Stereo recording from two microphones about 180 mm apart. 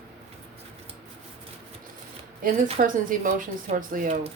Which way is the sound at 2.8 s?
50° right (ahead or behind).